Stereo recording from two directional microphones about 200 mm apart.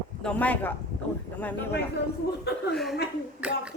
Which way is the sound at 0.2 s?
5° left (ahead or behind).